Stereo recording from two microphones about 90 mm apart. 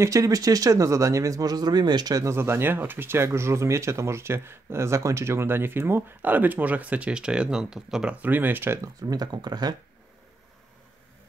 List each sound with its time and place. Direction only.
0.0 s speech: 40° right (ahead or behind)
2.2 s speech: 30° right (ahead or behind)
8.8 s speech: 45° right (ahead or behind)